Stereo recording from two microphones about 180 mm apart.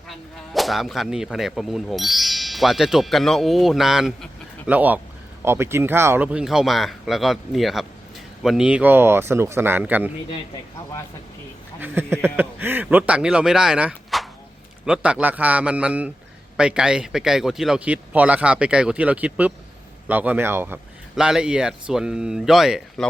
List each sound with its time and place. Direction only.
0.1 s speech: centre (ahead or behind)
11.8 s speech: 10° right (ahead or behind)